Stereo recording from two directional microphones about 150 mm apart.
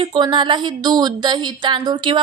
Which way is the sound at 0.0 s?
30° right (ahead or behind).